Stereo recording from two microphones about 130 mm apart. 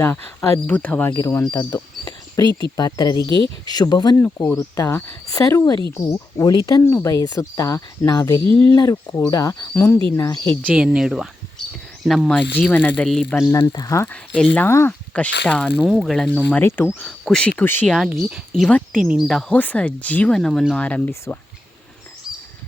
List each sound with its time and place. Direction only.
0.0 s speech: 15° left (ahead or behind)
1.1 s speech: 25° left (ahead or behind)
4.2 s speech: 20° left (ahead or behind)
9.7 s speech: 15° left (ahead or behind)
10.8 s speech: 5° right (ahead or behind)
12.3 s speech: 10° left (ahead or behind)
13.5 s speech: 25° left (ahead or behind)
14.1 s speech: 10° left (ahead or behind)
17.0 s speech: 5° left (ahead or behind)
17.8 s speech: centre (ahead or behind)
19.5 s speech: 10° left (ahead or behind)
20.7 s speech: 10° left (ahead or behind)